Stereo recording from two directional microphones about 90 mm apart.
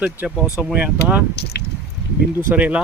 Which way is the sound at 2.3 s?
20° right (ahead or behind).